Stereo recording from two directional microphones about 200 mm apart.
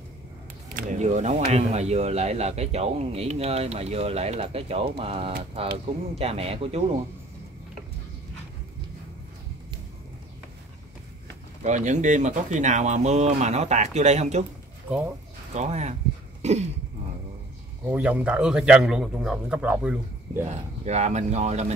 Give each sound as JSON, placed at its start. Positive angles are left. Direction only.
{"t": 0.7, "sound": "speech", "side_deg": -40}
{"t": 11.6, "sound": "speech", "side_deg": -35}
{"t": 15.5, "sound": "speech", "side_deg": -35}
{"t": 17.8, "sound": "a man's voice", "side_deg": -10}
{"t": 20.4, "sound": "speech", "side_deg": -35}